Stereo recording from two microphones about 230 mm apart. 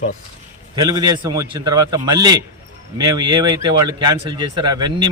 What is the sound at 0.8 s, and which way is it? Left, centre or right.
Speech, centre.